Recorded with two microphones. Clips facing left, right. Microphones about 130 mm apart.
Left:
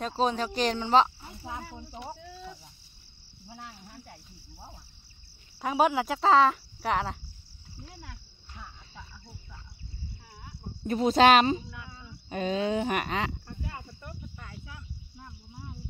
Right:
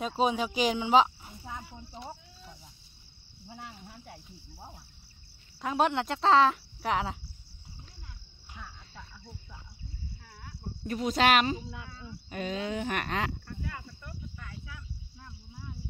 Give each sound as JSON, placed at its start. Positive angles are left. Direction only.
{"t": 0.0, "sound": "speech", "side_deg": -5}
{"t": 2.1, "sound": "a sound", "side_deg": 70}
{"t": 3.4, "sound": "speech", "side_deg": 5}
{"t": 5.6, "sound": "speech", "side_deg": 5}
{"t": 7.9, "sound": "a sound", "side_deg": 90}
{"t": 8.6, "sound": "cricket", "side_deg": 0}
{"t": 10.8, "sound": "speech", "side_deg": 30}
{"t": 11.6, "sound": "speech", "side_deg": -25}
{"t": 12.3, "sound": "speech", "side_deg": 30}
{"t": 12.9, "sound": "speech", "side_deg": 5}
{"t": 13.5, "sound": "cricket", "side_deg": 25}